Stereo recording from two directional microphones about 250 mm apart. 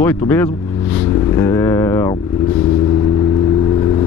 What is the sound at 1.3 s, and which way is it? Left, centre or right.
Vehicle, centre.